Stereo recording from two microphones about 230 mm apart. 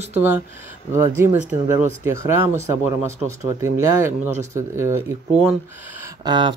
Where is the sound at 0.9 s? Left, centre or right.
Centre.